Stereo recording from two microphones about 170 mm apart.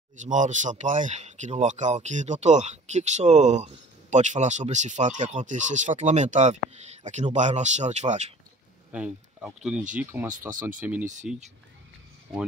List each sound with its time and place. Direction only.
0.2 s speech: 45° right (ahead or behind)
8.9 s speech: 5° right (ahead or behind)